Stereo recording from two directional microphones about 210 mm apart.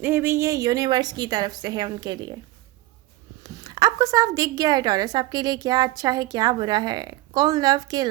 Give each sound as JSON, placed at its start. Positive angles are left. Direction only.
{"t": 0.0, "sound": "a woman's voice", "side_deg": -10}
{"t": 3.4, "sound": "a woman's voice", "side_deg": -15}